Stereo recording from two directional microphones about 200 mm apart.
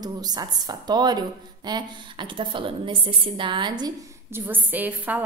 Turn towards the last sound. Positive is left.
turn(degrees=-10)  # may be behind; listen again after turning